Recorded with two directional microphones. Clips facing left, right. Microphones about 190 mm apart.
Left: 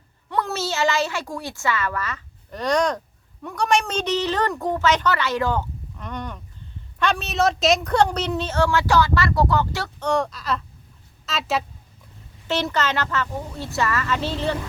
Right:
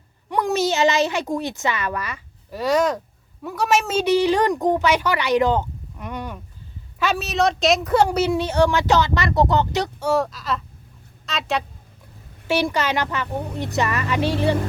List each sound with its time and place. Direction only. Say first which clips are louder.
0.3 s a woman's voice: right 5 dB; 15° right (ahead or behind)
10.0 s speech: left 1 dB; 5° right (ahead or behind)
12.5 s a woman's voice: right 2 dB; 10° right (ahead or behind)